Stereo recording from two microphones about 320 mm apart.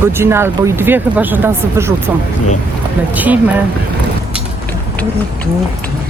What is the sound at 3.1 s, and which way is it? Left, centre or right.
Speech, centre.